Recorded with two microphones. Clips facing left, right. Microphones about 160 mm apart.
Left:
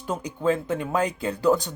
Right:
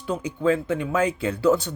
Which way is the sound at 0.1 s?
40° left (ahead or behind).